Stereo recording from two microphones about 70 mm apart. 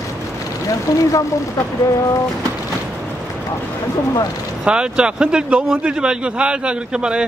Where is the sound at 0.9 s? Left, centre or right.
Left.